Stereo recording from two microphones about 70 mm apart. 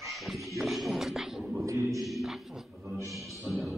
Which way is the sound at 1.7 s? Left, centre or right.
Right.